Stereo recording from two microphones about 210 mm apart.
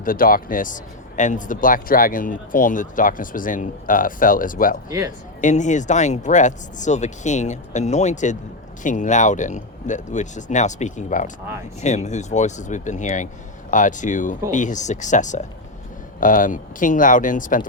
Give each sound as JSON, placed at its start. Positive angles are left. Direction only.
{"t": 0.0, "sound": "speech", "side_deg": 40}
{"t": 4.9, "sound": "speech", "side_deg": -15}
{"t": 5.4, "sound": "speech", "side_deg": 35}